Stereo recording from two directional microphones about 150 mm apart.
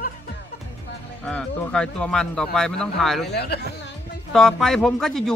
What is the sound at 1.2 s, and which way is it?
Speech, 5° left (ahead or behind).